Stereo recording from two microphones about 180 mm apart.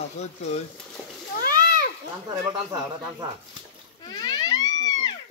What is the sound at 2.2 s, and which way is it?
Speech, 20° right (ahead or behind).